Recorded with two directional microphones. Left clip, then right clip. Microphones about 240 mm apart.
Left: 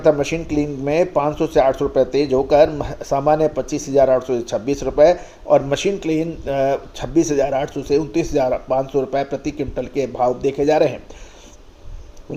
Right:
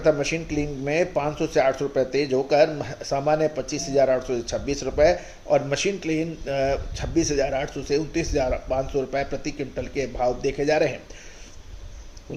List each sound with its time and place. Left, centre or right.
0.0 s speech: left